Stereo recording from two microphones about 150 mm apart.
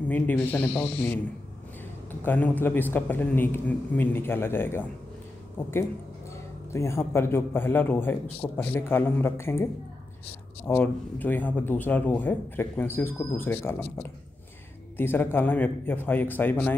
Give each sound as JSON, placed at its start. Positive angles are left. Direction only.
{"t": 0.1, "sound": "speech", "side_deg": 10}
{"t": 2.2, "sound": "speech", "side_deg": 10}
{"t": 10.7, "sound": "speech", "side_deg": 10}
{"t": 15.0, "sound": "speech", "side_deg": 15}